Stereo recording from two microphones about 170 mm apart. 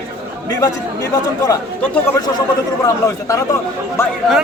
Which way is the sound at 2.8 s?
20° left (ahead or behind).